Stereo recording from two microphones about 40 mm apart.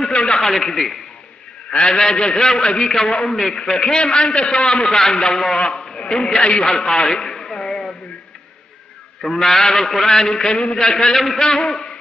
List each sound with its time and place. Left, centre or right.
0.3 s a man's voice: centre
1.7 s a man's voice: centre
3.5 s a man's voice: centre
9.2 s a man's voice: centre